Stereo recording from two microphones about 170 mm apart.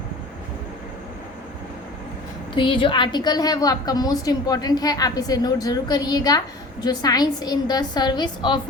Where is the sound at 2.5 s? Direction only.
30° left (ahead or behind).